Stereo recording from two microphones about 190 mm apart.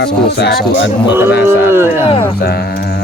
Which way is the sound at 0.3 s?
60° left (ahead or behind).